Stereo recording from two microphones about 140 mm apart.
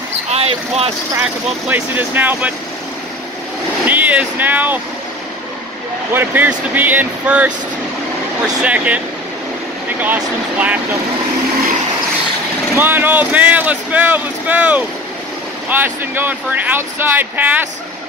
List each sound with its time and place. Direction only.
0.3 s speech: 45° right (ahead or behind)
1.7 s speech: 15° right (ahead or behind)
3.8 s vehicle: 10° right (ahead or behind)
6.1 s speech: 15° right (ahead or behind)
8.6 s speech: 10° right (ahead or behind)
12.7 s speech: 15° right (ahead or behind)